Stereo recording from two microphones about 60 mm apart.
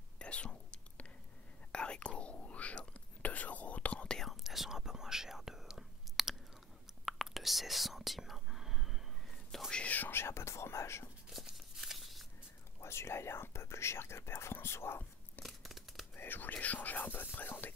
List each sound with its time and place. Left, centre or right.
0.2 s whispering: centre
4.2 s whispering: centre
9.7 s whispering: centre
10.1 s whispering: left
11.2 s a sound: centre
12.8 s whispering: left
15.4 s tearing: centre
16.2 s whispering: left